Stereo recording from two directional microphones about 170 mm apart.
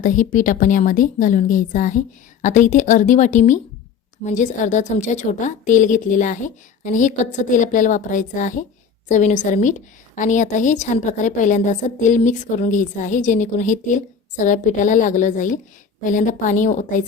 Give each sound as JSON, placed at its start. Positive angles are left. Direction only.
{"t": 0.0, "sound": "a woman's voice", "side_deg": 50}